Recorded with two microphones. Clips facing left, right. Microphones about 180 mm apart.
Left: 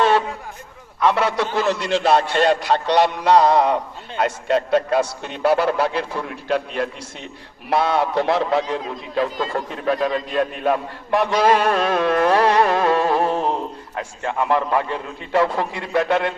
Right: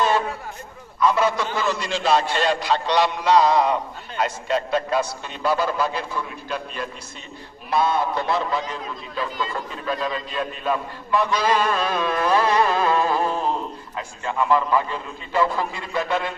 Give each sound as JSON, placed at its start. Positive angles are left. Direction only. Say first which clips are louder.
{"t": 0.9, "sound": "a man's voice", "louder": "left 1 dB", "side_deg": 70}